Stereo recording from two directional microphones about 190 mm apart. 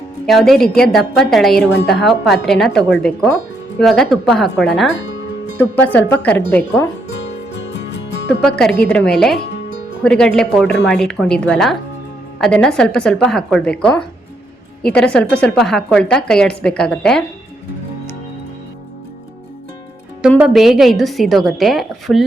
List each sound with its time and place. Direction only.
0.3 s a woman's voice: centre (ahead or behind)
7.1 s music: 65° left (ahead or behind)
8.4 s a woman's voice: 5° left (ahead or behind)
20.5 s a woman's voice: centre (ahead or behind)